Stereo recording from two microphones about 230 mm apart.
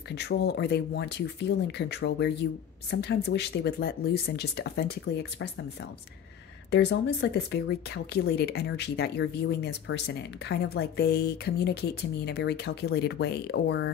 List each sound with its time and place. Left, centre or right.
0.1 s speech: left